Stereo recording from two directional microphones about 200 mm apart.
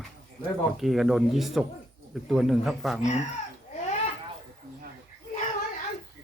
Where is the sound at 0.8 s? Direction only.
Centre (ahead or behind).